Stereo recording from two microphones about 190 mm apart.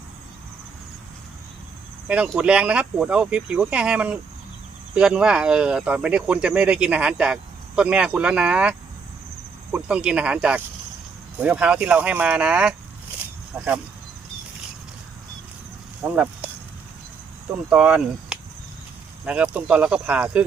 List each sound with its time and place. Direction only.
2.0 s speech: 5° right (ahead or behind)
9.7 s speech: 5° right (ahead or behind)
16.1 s speech: 10° right (ahead or behind)
17.7 s speech: 5° right (ahead or behind)